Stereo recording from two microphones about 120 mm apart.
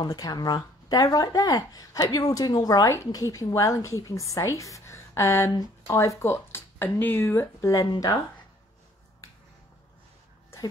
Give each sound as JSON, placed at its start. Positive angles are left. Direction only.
{"t": 0.0, "sound": "speech", "side_deg": 35}